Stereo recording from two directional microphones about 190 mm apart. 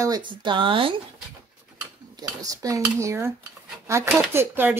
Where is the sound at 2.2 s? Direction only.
20° right (ahead or behind).